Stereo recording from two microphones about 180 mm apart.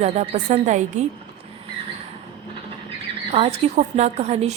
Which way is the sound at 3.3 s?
35° right (ahead or behind).